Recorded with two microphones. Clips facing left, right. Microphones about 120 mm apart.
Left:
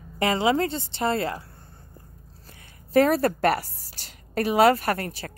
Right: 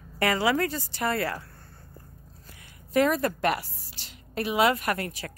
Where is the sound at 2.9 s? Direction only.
40° left (ahead or behind).